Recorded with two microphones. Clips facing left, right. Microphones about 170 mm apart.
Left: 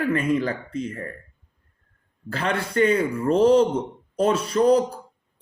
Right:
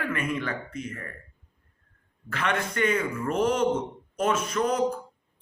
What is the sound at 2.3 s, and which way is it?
A man's voice, 35° left (ahead or behind).